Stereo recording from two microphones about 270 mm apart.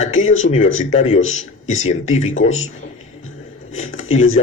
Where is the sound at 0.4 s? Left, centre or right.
Left.